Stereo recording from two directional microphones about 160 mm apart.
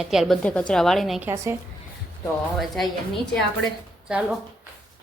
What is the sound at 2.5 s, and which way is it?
Speech, centre (ahead or behind).